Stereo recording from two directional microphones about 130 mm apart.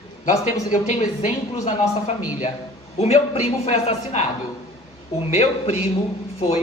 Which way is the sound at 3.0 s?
50° left (ahead or behind).